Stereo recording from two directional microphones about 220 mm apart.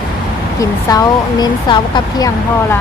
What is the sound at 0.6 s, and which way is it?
Speech, 15° left (ahead or behind).